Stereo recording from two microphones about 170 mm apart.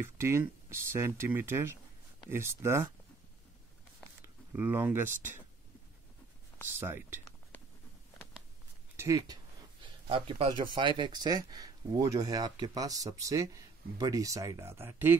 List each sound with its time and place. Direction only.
0.0 s speech: 15° right (ahead or behind)
4.5 s speech: 15° right (ahead or behind)
6.7 s speech: 15° right (ahead or behind)
8.9 s speech: 15° right (ahead or behind)
10.0 s speech: 35° right (ahead or behind); by 15.1 s 15° right (ahead or behind)